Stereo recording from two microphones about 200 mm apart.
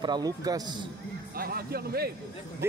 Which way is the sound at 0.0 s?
20° right (ahead or behind).